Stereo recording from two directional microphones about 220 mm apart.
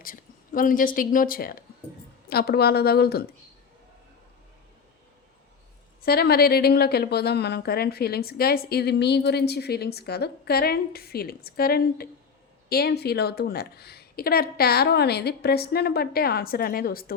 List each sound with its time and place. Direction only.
0.0 s a woman's voice: 40° left (ahead or behind)
6.1 s a woman's voice: 45° left (ahead or behind)